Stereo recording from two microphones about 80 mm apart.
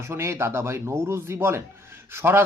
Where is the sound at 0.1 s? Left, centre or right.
Right.